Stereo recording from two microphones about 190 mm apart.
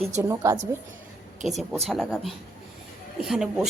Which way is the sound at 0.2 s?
15° right (ahead or behind).